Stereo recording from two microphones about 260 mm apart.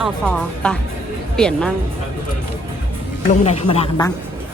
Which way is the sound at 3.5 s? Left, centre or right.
Left.